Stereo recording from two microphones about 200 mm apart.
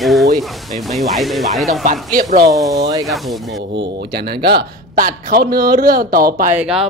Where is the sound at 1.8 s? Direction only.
45° right (ahead or behind).